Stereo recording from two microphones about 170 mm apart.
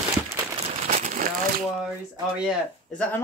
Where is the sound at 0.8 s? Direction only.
45° right (ahead or behind).